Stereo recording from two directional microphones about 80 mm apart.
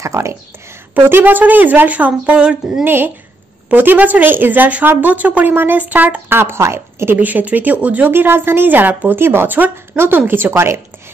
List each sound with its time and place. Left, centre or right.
0.0 s speech: right
0.9 s a woman's voice: right
2.8 s a woman's voice: right
7.2 s a woman's voice: right